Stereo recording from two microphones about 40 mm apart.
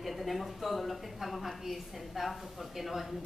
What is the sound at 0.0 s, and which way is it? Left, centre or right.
Speech, centre.